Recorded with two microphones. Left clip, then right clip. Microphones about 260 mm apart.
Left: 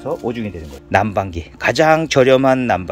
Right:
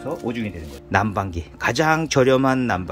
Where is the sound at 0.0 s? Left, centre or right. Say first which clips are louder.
Left 5 dB; left.